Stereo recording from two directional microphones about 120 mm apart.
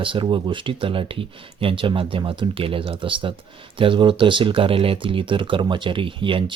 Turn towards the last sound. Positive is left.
turn(degrees=-45)  # may be behind; listen again after turning